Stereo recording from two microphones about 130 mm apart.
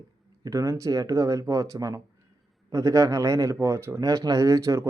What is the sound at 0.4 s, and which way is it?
Speech, 25° right (ahead or behind).